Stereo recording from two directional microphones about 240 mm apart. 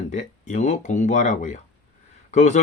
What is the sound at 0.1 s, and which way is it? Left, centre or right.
Speech, left.